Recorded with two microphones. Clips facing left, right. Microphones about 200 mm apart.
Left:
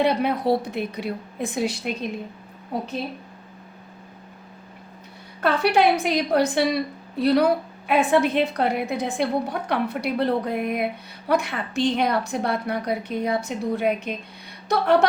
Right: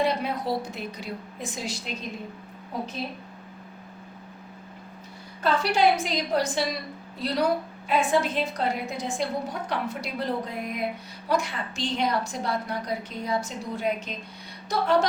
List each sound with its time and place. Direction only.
0.0 s a woman's voice: 65° left (ahead or behind)
5.4 s a woman's voice: 60° left (ahead or behind)